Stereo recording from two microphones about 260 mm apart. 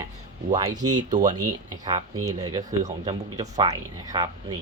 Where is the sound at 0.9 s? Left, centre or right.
Right.